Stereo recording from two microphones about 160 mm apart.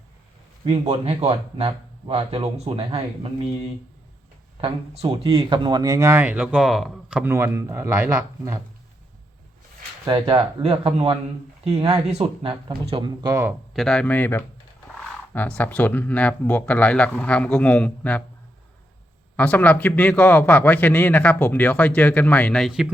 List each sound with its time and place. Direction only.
0.6 s speech: 40° right (ahead or behind)
4.6 s speech: 35° right (ahead or behind); by 7.3 s 5° right (ahead or behind)
7.3 s speech: 15° right (ahead or behind)
10.1 s speech: 30° right (ahead or behind)
13.2 s speech: 15° right (ahead or behind)
13.5 s a man's voice: centre (ahead or behind)
19.4 s a man's voice: 10° left (ahead or behind)